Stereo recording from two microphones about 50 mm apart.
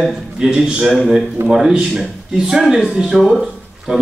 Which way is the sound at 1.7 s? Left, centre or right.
Right.